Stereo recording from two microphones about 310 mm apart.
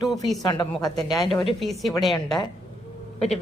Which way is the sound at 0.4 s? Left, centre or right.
Centre.